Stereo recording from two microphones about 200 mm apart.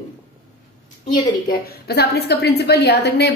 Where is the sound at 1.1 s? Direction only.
50° left (ahead or behind).